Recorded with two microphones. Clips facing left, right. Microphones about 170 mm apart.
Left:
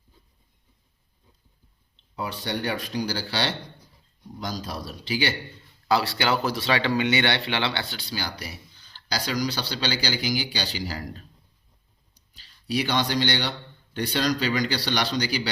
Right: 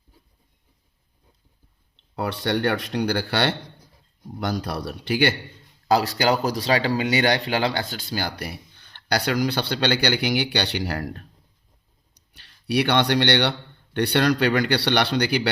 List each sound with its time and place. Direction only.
2.1 s speech: 65° right (ahead or behind)
5.9 s speech: 40° right (ahead or behind); by 11.3 s 60° right (ahead or behind)
12.3 s speech: 65° right (ahead or behind)